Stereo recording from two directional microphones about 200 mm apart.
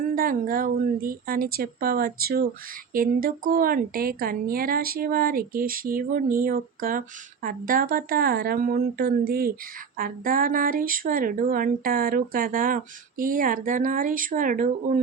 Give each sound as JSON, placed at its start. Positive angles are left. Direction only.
{"t": 0.2, "sound": "speech", "side_deg": -45}